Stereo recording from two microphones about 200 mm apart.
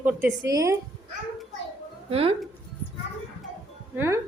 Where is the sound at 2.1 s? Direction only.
30° right (ahead or behind).